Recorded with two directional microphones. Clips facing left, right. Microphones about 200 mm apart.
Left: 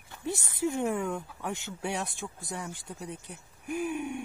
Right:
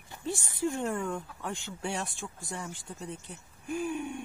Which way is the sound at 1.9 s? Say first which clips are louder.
Left 1 dB; 15° left (ahead or behind).